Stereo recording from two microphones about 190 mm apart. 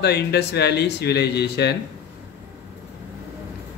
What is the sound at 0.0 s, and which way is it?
Speech, 60° left (ahead or behind).